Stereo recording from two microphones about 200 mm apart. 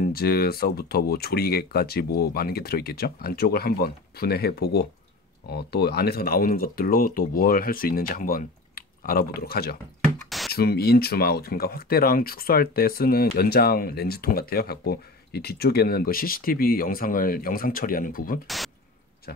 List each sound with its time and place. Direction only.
0.0 s speech: 50° left (ahead or behind)